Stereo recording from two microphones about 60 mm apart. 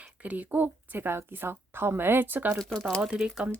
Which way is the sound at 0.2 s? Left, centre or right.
Right.